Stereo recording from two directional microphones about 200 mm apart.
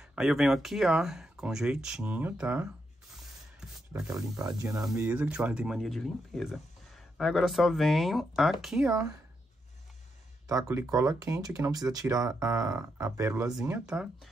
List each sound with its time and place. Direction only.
0.0 s speech: 5° right (ahead or behind)
3.9 s speech: 15° right (ahead or behind)
8.9 s speech: 15° right (ahead or behind)
10.7 s speech: 15° right (ahead or behind)
13.5 s speech: 5° right (ahead or behind)